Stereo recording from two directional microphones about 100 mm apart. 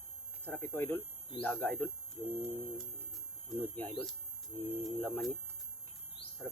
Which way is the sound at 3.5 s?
15° left (ahead or behind).